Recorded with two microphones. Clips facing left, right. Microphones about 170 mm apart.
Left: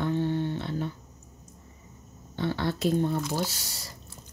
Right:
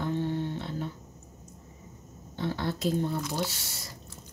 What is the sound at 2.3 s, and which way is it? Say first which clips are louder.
Speech: left 3 dB; 70° left (ahead or behind).